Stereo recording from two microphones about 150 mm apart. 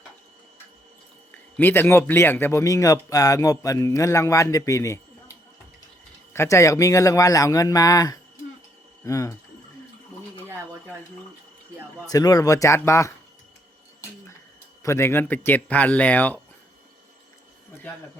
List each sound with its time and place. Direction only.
1.3 s a man's voice: 10° left (ahead or behind)
6.3 s a man's voice: 20° left (ahead or behind)
12.0 s a man's voice: 25° left (ahead or behind)
14.8 s speech: 15° left (ahead or behind)